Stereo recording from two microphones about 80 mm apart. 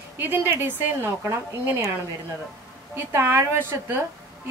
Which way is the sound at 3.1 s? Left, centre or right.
Right.